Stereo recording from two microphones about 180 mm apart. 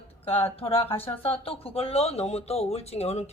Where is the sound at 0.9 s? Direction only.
10° left (ahead or behind).